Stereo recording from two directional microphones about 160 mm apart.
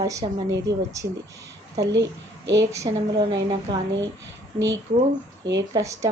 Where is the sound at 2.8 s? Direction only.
30° right (ahead or behind).